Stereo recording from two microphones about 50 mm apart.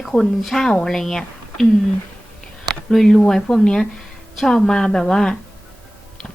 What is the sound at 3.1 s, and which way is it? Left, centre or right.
Speech, centre.